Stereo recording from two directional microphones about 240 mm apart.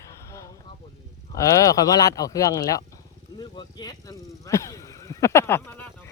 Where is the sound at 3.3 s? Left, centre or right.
Centre.